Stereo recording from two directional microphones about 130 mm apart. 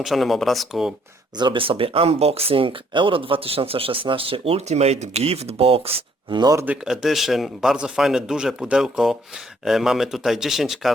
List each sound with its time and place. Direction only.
0.0 s a man's voice: centre (ahead or behind)
1.4 s speech: 40° right (ahead or behind)
6.4 s speech: 25° right (ahead or behind)
6.7 s a man's voice: 5° right (ahead or behind)